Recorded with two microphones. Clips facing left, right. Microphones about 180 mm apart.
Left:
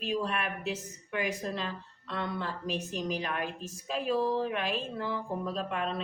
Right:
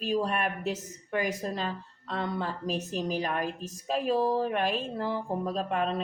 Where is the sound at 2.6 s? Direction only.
40° right (ahead or behind).